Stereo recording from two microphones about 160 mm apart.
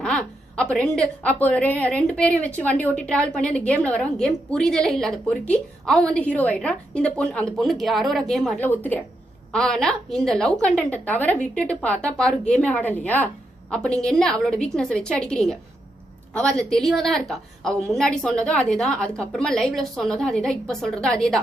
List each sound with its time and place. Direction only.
0.0 s a woman's voice: 5° left (ahead or behind)